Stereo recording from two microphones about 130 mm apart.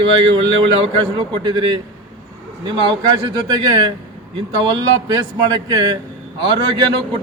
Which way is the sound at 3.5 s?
30° right (ahead or behind).